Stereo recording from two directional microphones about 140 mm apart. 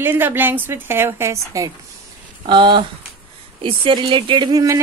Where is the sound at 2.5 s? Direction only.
35° right (ahead or behind).